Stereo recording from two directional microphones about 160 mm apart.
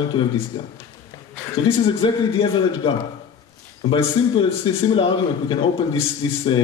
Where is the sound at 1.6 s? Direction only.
35° left (ahead or behind).